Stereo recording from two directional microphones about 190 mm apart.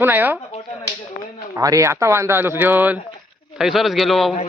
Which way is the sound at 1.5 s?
15° right (ahead or behind).